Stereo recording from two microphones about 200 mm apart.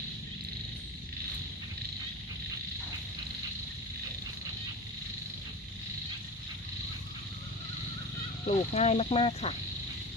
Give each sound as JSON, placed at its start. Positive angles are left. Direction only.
{"t": 8.4, "sound": "speech", "side_deg": 30}